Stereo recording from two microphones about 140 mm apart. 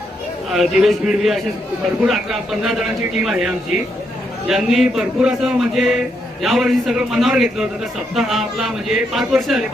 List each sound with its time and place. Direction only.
0.5 s a man's voice: centre (ahead or behind)